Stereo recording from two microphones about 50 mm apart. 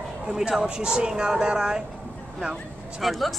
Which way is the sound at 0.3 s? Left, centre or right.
Centre.